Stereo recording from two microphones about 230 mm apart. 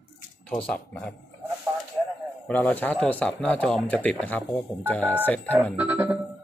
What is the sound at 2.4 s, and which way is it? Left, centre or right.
Speech, centre.